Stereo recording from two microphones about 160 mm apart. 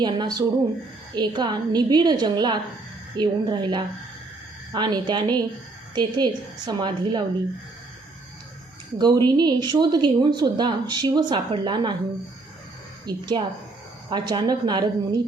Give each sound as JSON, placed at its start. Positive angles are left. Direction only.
{"t": 0.0, "sound": "a woman's voice", "side_deg": -25}
{"t": 9.0, "sound": "a woman's voice", "side_deg": -25}
{"t": 13.1, "sound": "a woman's voice", "side_deg": -25}